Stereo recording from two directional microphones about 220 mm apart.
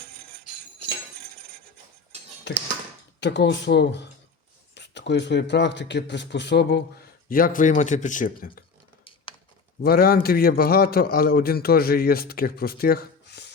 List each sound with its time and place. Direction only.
3.2 s a man's voice: 50° left (ahead or behind)
7.3 s speech: 40° left (ahead or behind)
9.8 s a man's voice: 45° left (ahead or behind)